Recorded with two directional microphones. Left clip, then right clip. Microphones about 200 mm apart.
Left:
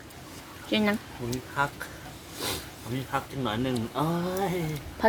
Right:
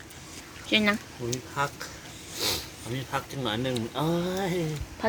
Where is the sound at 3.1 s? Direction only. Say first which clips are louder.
Even; 25° right (ahead or behind).